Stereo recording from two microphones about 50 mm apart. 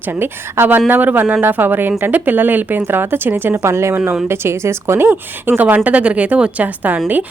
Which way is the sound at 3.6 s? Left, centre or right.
Right.